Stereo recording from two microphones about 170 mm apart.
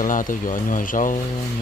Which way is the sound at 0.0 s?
50° left (ahead or behind).